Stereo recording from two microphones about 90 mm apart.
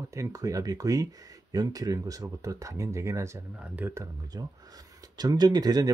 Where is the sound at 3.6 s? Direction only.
20° right (ahead or behind).